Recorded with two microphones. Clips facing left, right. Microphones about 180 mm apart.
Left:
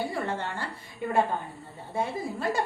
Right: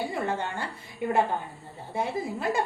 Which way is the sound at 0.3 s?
15° right (ahead or behind).